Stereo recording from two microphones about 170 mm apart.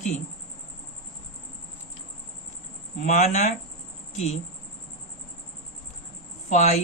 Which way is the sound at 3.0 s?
45° left (ahead or behind).